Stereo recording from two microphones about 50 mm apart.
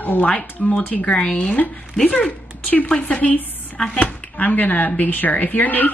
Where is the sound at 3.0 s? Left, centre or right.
Left.